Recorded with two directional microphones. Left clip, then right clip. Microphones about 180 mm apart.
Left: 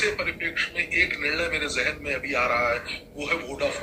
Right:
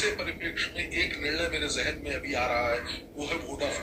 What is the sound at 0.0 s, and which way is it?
A man's voice, 15° left (ahead or behind).